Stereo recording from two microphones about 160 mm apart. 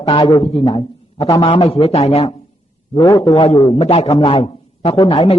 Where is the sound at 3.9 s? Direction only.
40° left (ahead or behind).